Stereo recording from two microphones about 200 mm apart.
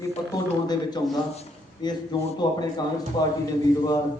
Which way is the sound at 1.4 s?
20° left (ahead or behind).